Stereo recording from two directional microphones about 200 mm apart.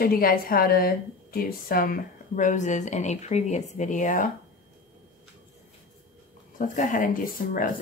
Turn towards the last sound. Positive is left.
turn(degrees=40)  # may be behind; listen again after turning